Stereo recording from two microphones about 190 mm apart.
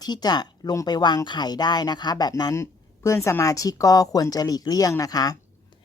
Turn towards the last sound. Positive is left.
turn(degrees=20)  # may be behind; listen again after turning